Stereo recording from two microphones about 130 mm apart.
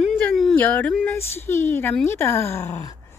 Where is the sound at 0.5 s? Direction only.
10° left (ahead or behind).